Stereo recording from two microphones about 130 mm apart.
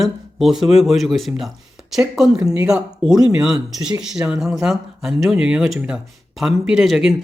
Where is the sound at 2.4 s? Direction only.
30° right (ahead or behind).